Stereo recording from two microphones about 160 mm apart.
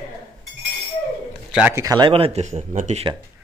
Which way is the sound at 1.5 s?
5° right (ahead or behind).